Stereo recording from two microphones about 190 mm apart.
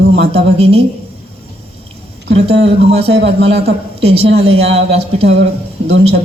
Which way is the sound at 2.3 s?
30° right (ahead or behind).